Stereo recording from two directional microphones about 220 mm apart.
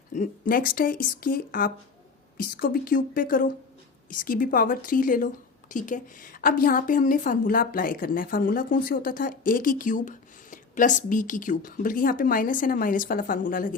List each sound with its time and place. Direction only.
0.1 s a woman's voice: 35° left (ahead or behind)